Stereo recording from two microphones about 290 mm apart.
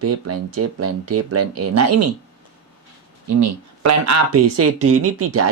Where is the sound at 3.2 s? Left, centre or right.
Right.